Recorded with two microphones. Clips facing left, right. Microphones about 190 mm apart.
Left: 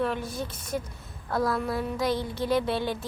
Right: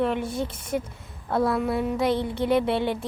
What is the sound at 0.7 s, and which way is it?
Speech, 65° right (ahead or behind).